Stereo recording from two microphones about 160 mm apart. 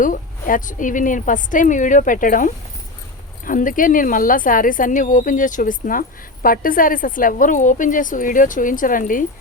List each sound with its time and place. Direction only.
0.0 s speech: 55° left (ahead or behind)